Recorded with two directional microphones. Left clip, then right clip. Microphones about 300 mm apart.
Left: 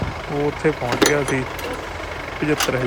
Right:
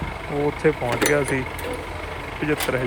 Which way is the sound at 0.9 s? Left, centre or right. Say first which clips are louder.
Left 3 dB; left.